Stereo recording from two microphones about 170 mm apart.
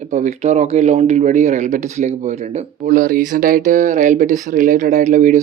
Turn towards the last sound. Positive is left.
turn(degrees=-45)  # may be behind; listen again after turning